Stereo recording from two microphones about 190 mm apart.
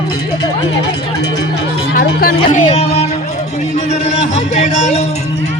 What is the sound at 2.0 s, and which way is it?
Speech, 50° left (ahead or behind).